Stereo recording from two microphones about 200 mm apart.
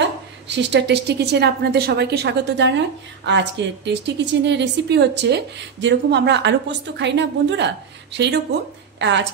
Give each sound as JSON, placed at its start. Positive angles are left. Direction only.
{"t": 0.5, "sound": "a woman's voice", "side_deg": -60}